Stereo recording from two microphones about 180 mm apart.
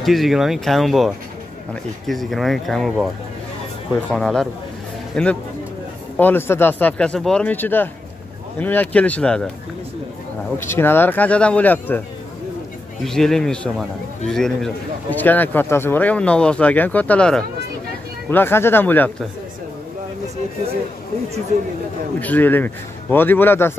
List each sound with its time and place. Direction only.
0.0 s a man's voice: centre (ahead or behind)
10.6 s a man's voice: 15° left (ahead or behind)
13.0 s a man's voice: centre (ahead or behind)
21.5 s speech: 40° right (ahead or behind)
22.2 s a man's voice: 10° left (ahead or behind)